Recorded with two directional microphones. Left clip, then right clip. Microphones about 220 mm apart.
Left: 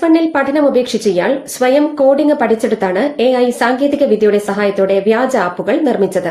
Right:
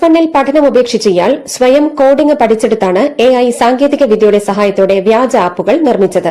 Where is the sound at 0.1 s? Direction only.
30° right (ahead or behind).